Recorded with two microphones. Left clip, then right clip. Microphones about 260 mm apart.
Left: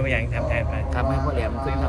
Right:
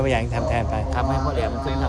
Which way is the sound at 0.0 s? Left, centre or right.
Centre.